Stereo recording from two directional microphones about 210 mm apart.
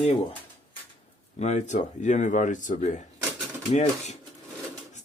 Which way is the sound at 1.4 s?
35° left (ahead or behind).